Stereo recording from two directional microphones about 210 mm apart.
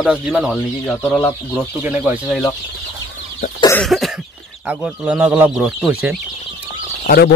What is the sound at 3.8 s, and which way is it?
Cough, centre (ahead or behind).